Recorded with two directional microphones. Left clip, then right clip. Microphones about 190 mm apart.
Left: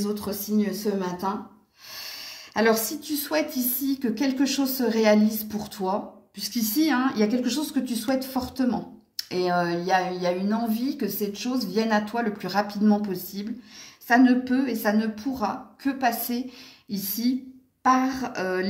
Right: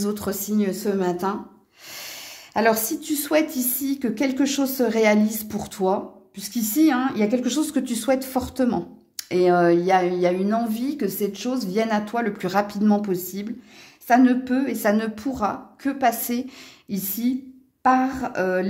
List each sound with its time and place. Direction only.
0.0 s speech: 60° right (ahead or behind)
2.0 s a woman's voice: 45° right (ahead or behind)